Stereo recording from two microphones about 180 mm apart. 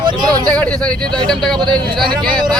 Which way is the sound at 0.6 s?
5° left (ahead or behind).